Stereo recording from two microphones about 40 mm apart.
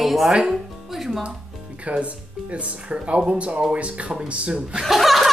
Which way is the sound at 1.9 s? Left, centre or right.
Right.